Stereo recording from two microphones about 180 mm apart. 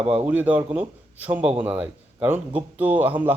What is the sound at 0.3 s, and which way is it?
A man's voice, 10° right (ahead or behind).